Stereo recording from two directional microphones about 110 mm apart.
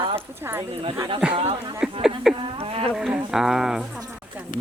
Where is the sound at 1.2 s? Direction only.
10° right (ahead or behind).